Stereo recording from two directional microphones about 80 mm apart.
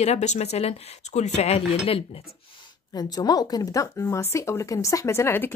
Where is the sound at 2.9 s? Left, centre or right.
Left.